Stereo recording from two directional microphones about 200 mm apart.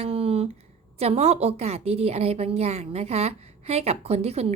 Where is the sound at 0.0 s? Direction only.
30° right (ahead or behind).